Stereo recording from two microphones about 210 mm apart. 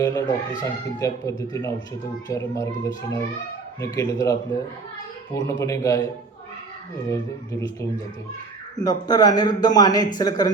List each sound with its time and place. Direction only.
0.0 s a child's voice: 15° left (ahead or behind)
8.7 s a child's voice: 20° left (ahead or behind)